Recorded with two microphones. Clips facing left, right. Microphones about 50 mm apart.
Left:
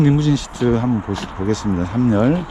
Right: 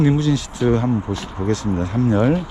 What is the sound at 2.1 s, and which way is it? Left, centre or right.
Speech, left.